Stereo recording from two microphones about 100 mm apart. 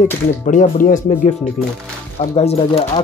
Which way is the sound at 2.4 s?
80° left.